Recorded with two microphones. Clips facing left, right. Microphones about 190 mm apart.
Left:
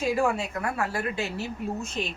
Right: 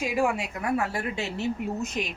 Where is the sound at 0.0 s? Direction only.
15° right (ahead or behind).